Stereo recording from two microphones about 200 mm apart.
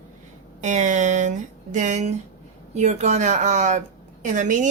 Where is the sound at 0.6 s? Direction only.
35° right (ahead or behind).